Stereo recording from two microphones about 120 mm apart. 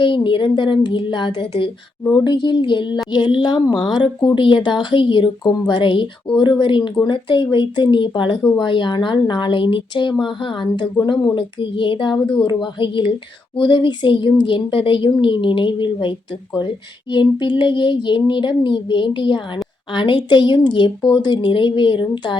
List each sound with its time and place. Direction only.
0.0 s speech: 45° left (ahead or behind)